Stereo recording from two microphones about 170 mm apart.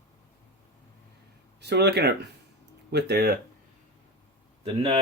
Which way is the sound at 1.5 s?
80° right.